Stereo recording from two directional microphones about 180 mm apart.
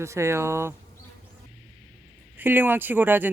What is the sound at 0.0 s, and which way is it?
Speech, 15° right (ahead or behind).